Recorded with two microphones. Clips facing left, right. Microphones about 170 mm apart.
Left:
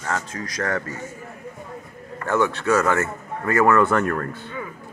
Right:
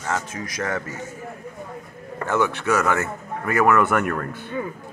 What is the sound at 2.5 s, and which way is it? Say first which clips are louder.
A man's voice: left 2 dB; 20° right (ahead or behind).